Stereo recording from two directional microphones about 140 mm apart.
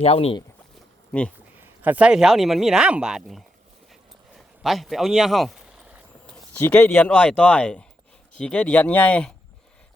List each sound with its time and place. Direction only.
0.0 s speech: 45° left (ahead or behind)
1.8 s speech: 10° right (ahead or behind)
4.6 s speech: centre (ahead or behind)
6.3 s speech: 10° left (ahead or behind)